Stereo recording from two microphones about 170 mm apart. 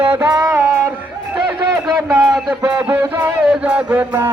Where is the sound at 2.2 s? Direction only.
25° right (ahead or behind).